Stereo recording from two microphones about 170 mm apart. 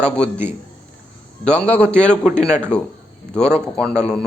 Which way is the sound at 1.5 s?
5° left (ahead or behind).